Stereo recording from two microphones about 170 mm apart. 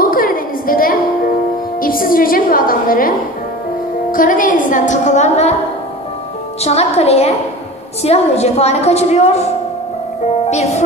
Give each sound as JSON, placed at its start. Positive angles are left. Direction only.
{"t": 0.0, "sound": "a sound", "side_deg": 55}
{"t": 1.8, "sound": "music", "side_deg": 55}
{"t": 6.6, "sound": "a woman's voice", "side_deg": 40}
{"t": 10.5, "sound": "speech", "side_deg": 40}